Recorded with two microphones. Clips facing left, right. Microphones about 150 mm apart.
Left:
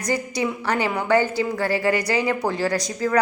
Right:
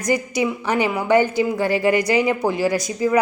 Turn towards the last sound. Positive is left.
turn(degrees=-10)  # may be behind; listen again after turning